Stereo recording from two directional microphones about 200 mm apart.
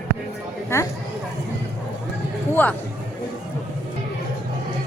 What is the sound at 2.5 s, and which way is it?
Speech, 10° left (ahead or behind).